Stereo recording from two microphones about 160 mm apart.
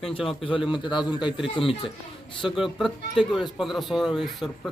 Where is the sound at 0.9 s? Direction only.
30° left (ahead or behind).